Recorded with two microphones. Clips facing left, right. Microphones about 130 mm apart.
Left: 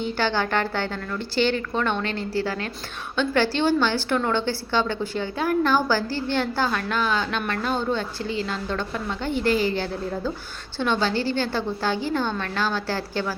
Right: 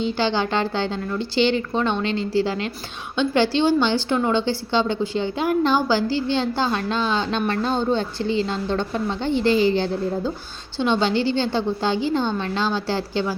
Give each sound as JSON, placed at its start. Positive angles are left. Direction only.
{"t": 0.0, "sound": "a woman's voice", "side_deg": -20}